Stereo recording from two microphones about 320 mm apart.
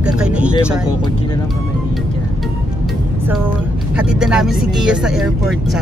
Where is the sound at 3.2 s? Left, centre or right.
Centre.